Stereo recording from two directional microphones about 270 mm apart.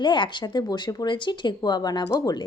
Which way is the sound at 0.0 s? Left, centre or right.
Centre.